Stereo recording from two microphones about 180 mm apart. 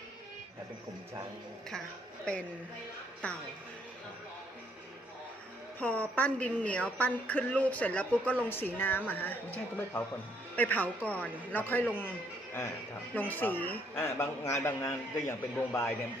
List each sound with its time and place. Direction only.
3.2 s a woman's voice: 5° left (ahead or behind)
5.8 s a woman's voice: 5° left (ahead or behind)
13.1 s a woman's voice: 10° left (ahead or behind)